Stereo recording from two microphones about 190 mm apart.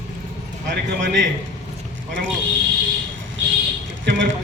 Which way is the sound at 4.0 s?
75° right (ahead or behind).